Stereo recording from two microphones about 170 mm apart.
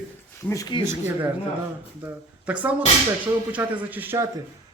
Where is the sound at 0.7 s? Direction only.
25° left (ahead or behind).